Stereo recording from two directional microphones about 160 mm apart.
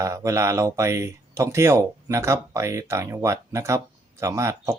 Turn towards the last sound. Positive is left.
turn(degrees=-20)  # may be behind; listen again after turning